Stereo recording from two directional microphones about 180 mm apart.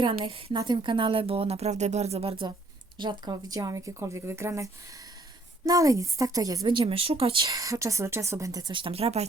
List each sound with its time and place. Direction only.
0.0 s a woman's voice: 30° right (ahead or behind)